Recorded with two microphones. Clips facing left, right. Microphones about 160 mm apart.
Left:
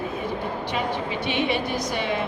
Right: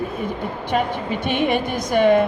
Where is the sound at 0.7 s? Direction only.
50° right (ahead or behind).